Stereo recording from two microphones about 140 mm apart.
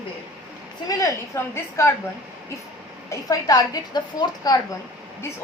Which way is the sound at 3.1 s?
25° left (ahead or behind).